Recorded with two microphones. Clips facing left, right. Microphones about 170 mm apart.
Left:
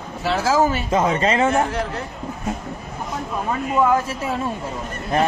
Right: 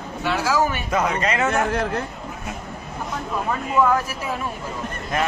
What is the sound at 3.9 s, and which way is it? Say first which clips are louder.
Speech: left 3 dB; 25° left (ahead or behind).